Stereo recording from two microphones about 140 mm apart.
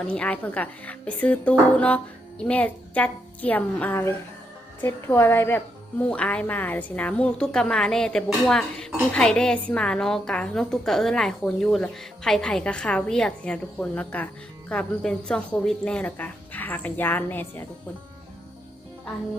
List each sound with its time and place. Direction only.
0.0 s speech: 10° left (ahead or behind)